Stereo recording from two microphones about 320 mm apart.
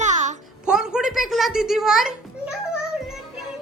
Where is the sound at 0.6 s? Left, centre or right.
Centre.